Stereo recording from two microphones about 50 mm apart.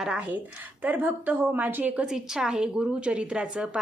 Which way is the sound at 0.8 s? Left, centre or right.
Right.